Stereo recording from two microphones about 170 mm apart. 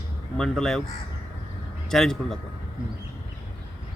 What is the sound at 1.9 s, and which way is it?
Speech, centre (ahead or behind).